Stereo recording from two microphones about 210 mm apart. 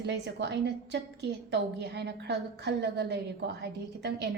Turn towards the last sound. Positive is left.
turn(degrees=-55)  # may be behind; listen again after turning